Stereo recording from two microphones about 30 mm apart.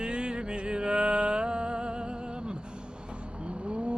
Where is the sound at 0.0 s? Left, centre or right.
Right.